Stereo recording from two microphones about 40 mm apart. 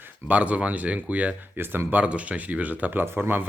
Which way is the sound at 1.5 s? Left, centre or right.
Right.